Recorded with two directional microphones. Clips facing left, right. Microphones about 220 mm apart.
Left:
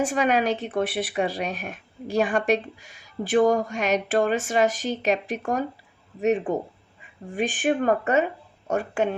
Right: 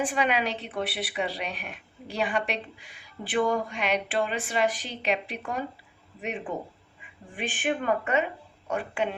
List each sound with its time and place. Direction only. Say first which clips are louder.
0.0 s a woman's voice: left 5 dB; 45° left (ahead or behind)
7.3 s a woman's voice: left 6 dB; 45° left (ahead or behind)